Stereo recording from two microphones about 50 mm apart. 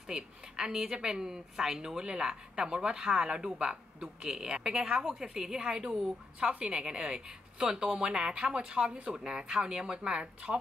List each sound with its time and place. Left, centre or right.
0.1 s a woman's voice: centre